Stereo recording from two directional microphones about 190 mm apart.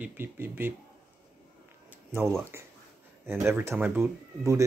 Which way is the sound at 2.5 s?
15° right (ahead or behind).